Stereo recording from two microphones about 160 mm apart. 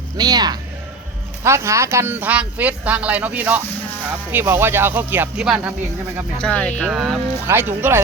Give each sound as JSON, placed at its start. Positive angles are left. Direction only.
{"t": 0.2, "sound": "speech", "side_deg": -25}
{"t": 6.4, "sound": "speech", "side_deg": 10}
{"t": 7.4, "sound": "speech", "side_deg": -10}